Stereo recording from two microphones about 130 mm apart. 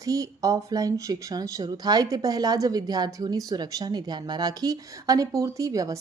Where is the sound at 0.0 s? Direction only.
25° right (ahead or behind).